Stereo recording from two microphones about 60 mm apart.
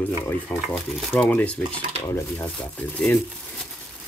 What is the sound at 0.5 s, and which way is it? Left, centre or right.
Speech, centre.